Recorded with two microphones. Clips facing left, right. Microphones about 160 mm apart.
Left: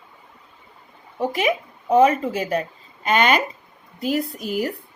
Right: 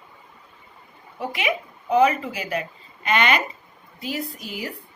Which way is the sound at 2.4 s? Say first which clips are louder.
Left 4 dB; 40° left (ahead or behind).